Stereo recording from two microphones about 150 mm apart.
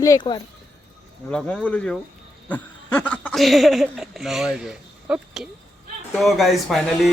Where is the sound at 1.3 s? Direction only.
5° left (ahead or behind).